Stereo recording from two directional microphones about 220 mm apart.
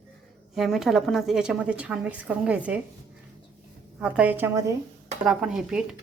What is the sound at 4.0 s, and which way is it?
A woman's voice, 5° right (ahead or behind).